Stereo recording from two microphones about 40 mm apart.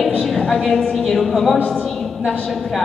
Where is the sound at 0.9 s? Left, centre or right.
Centre.